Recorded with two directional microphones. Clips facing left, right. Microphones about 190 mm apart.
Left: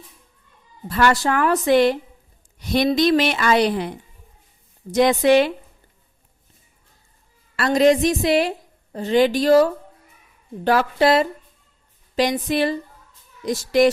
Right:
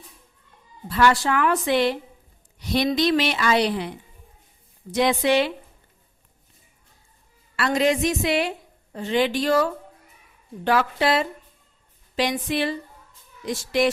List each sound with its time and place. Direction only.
0.9 s a woman's voice: 50° left (ahead or behind)
7.5 s a woman's voice: 40° left (ahead or behind)